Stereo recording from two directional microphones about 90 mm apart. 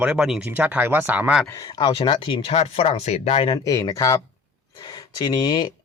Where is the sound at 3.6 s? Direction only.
35° left (ahead or behind); by 5.6 s 55° left (ahead or behind).